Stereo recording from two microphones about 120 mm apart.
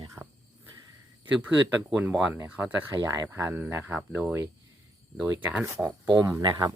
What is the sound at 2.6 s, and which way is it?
Speech, 20° right (ahead or behind).